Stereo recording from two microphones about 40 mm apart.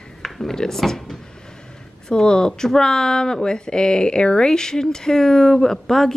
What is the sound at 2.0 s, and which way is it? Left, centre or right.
Speech, centre.